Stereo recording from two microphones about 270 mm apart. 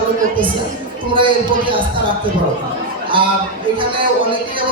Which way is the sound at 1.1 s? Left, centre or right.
Centre.